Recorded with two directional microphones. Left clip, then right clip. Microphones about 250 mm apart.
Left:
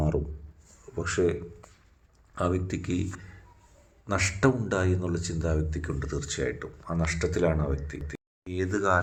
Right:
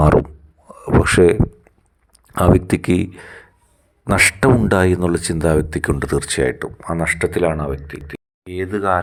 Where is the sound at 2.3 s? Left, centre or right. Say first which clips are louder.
Right 14 dB; right.